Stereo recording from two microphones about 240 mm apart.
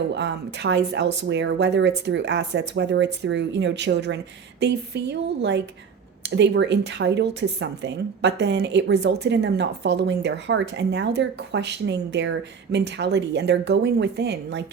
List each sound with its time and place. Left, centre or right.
0.1 s speech: right